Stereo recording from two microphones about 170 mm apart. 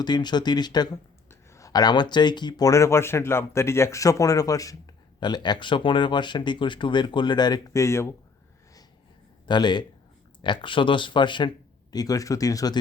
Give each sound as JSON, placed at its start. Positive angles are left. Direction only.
{"t": 0.0, "sound": "speech", "side_deg": 25}
{"t": 9.5, "sound": "speech", "side_deg": 25}